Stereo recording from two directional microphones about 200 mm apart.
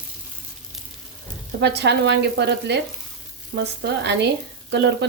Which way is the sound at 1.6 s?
60° right (ahead or behind).